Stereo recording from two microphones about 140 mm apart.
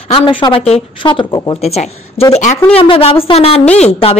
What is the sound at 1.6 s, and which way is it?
Speech, 50° left (ahead or behind).